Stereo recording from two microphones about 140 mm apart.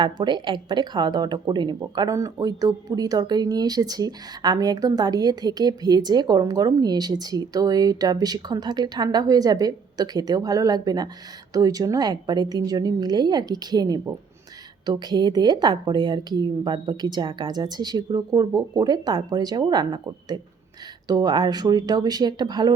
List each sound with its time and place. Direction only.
0.0 s speech: 35° right (ahead or behind)